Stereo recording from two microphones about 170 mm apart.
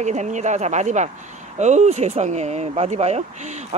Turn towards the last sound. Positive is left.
turn(degrees=-40)  # may be behind; listen again after turning